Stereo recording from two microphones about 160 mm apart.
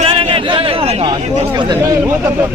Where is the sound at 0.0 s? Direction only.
35° right (ahead or behind).